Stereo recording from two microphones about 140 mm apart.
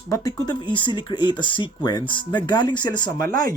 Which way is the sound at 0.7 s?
35° left (ahead or behind).